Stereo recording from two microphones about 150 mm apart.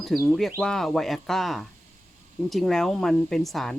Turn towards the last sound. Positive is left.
turn(degrees=0)  # may be behind; listen again after turning